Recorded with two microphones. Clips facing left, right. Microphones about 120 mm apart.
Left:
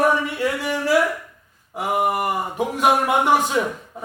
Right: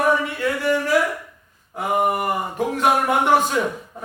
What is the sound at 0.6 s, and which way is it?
Speech, 15° left (ahead or behind).